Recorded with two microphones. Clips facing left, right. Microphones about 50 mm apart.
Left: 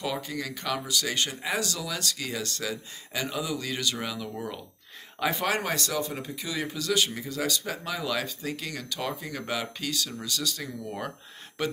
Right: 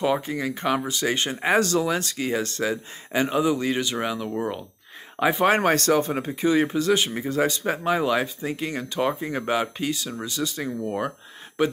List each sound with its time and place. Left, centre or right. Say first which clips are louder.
0.0 s speech: right 8 dB; right
1.4 s speech: right 10 dB; right
5.5 s speech: right 9 dB; right